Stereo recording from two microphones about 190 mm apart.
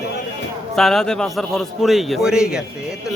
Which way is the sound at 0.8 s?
Centre (ahead or behind).